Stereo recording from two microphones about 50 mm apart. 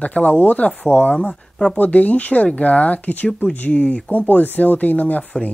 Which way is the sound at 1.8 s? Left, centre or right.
Left.